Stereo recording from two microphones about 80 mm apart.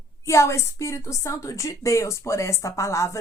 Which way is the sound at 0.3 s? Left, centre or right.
Left.